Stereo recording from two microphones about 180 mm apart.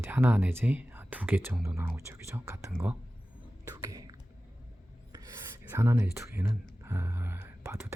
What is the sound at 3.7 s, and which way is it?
Whispering, 20° right (ahead or behind).